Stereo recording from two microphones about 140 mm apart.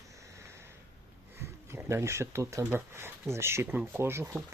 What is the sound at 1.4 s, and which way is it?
Speech, 15° right (ahead or behind).